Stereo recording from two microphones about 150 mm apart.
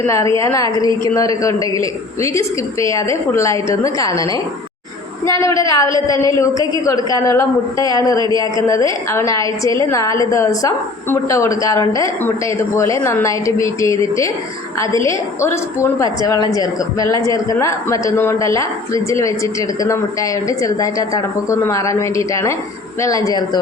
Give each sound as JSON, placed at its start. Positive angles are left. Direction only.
{"t": 0.3, "sound": "a woman's voice", "side_deg": 20}
{"t": 15.0, "sound": "a woman's voice", "side_deg": 20}
{"t": 20.5, "sound": "a woman's voice", "side_deg": 20}